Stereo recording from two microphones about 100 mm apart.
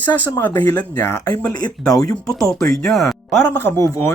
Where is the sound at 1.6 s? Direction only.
40° left (ahead or behind).